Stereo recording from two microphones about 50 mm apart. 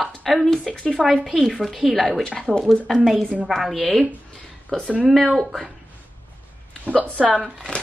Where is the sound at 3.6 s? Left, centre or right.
Centre.